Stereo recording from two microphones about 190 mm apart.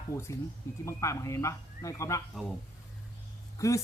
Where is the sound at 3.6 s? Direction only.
15° left (ahead or behind).